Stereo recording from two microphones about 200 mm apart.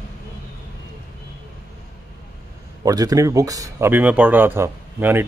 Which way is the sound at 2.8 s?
20° right (ahead or behind).